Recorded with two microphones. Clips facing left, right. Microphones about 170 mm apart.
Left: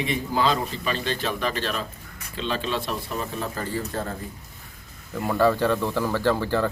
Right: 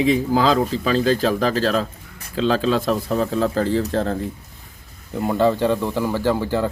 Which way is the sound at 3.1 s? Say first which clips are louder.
Right 12 dB; 90° right.